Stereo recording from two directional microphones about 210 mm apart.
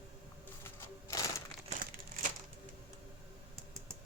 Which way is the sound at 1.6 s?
40° right (ahead or behind).